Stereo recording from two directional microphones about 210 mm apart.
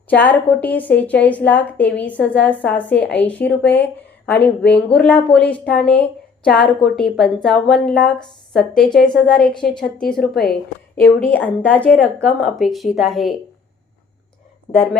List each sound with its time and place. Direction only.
0.1 s a woman's voice: 10° left (ahead or behind)
14.7 s speech: 25° left (ahead or behind)